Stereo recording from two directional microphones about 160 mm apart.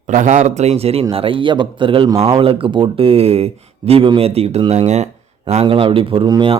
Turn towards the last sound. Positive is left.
turn(degrees=-30)  # may be behind; listen again after turning